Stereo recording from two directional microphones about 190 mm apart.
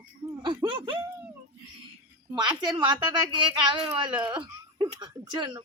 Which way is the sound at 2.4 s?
25° right (ahead or behind).